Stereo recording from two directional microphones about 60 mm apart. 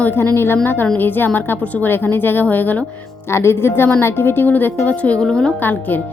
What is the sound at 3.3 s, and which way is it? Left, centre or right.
A woman's voice, left.